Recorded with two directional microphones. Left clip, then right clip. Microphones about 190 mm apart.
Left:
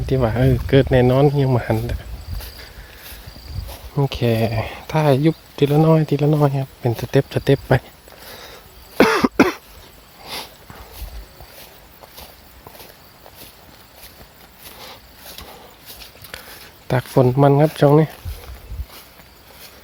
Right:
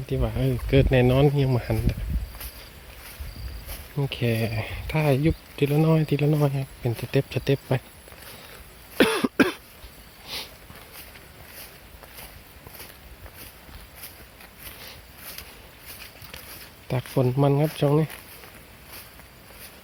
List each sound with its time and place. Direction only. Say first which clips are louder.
0.0 s speech: left 10 dB; 20° left (ahead or behind)
3.9 s speech: left 7 dB; 15° left (ahead or behind)
9.0 s cough: left 6 dB; 20° left (ahead or behind)
10.2 s a sound: left 4 dB; 15° left (ahead or behind)
16.9 s speech: left 9 dB; 15° left (ahead or behind)